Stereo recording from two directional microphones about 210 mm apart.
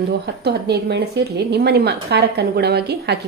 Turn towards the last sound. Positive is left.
turn(degrees=-50)  # may be behind; listen again after turning